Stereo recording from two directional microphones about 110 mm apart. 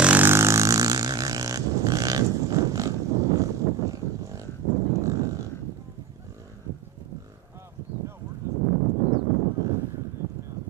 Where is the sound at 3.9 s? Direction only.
30° right (ahead or behind).